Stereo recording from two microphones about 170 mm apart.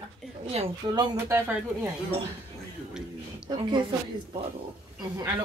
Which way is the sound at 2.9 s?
5° right (ahead or behind).